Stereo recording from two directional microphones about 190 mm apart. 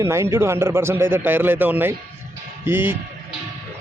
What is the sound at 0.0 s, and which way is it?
A man's voice, 15° right (ahead or behind).